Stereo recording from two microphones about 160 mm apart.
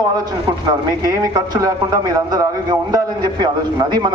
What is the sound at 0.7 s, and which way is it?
A man's voice, 25° right (ahead or behind).